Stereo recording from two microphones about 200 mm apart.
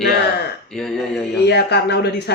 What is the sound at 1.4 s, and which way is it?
Speech, 55° left (ahead or behind).